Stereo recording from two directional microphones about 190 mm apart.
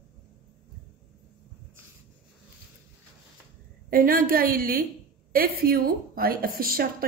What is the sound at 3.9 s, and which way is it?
Speech, 50° right (ahead or behind).